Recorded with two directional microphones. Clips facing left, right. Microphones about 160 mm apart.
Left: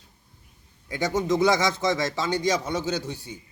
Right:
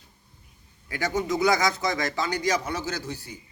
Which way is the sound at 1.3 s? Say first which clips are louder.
Left 2 dB; 25° left (ahead or behind).